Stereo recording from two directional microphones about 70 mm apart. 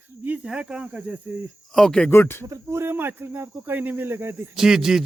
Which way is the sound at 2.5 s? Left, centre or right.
Right.